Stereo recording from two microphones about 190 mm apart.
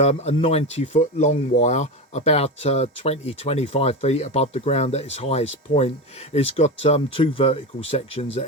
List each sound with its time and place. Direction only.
0.0 s speech: 35° left (ahead or behind)